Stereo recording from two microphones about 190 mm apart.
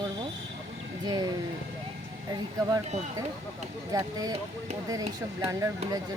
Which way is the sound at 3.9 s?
20° right (ahead or behind).